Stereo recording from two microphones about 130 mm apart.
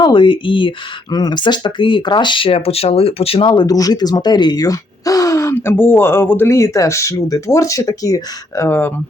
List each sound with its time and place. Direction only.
0.0 s speech: 40° left (ahead or behind); by 8.9 s 20° left (ahead or behind)